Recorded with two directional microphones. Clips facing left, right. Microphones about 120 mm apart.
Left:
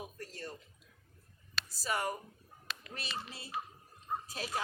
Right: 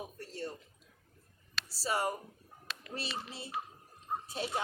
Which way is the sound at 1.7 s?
30° right (ahead or behind).